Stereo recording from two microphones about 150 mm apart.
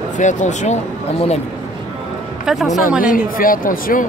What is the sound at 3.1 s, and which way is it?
Speech, 70° left (ahead or behind).